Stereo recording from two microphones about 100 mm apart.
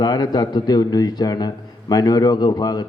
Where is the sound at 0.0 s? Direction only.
40° left (ahead or behind).